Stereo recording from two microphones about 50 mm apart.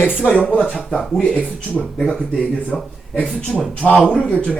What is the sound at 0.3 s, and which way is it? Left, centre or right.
Speech, left.